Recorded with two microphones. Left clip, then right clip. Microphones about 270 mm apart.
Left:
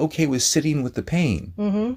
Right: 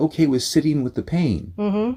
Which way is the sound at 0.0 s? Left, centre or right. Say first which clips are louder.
Right 2 dB; left.